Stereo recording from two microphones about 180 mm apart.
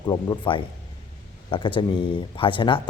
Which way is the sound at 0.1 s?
25° left (ahead or behind).